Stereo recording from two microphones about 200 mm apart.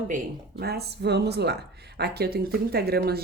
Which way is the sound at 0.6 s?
50° right (ahead or behind).